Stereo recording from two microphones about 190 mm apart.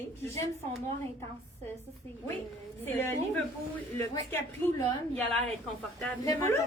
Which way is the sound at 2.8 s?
10° left (ahead or behind).